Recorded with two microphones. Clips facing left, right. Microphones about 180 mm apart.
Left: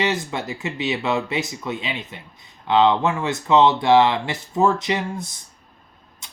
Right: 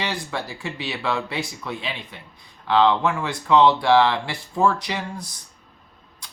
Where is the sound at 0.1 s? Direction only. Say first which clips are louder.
Left 3 dB; 20° left (ahead or behind).